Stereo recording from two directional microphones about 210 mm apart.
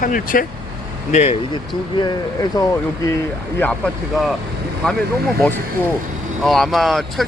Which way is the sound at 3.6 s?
5° left (ahead or behind).